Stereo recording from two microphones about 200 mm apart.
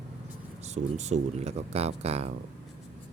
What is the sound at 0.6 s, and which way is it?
Speech, 35° right (ahead or behind).